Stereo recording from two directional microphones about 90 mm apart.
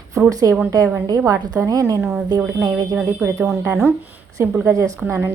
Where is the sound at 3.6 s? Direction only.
25° right (ahead or behind).